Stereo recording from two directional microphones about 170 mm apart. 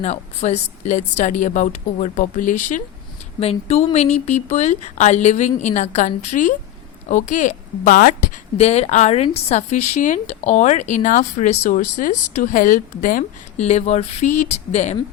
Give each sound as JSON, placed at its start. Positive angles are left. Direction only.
{"t": 0.0, "sound": "a woman's voice", "side_deg": 45}
{"t": 3.4, "sound": "a woman's voice", "side_deg": 35}
{"t": 8.5, "sound": "a woman's voice", "side_deg": 40}